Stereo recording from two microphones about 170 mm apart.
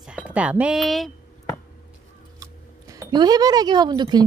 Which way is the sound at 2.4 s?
20° right (ahead or behind).